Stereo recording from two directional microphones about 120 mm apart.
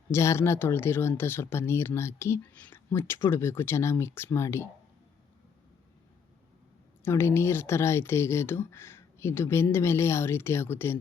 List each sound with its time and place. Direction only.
0.1 s speech: 25° left (ahead or behind)
7.0 s speech: 20° left (ahead or behind)